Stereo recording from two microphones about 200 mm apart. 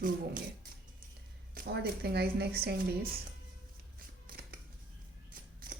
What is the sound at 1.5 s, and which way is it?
A woman's voice, 55° right (ahead or behind).